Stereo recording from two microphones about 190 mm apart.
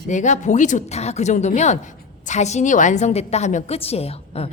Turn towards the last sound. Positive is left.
turn(degrees=30)  # may be behind; listen again after turning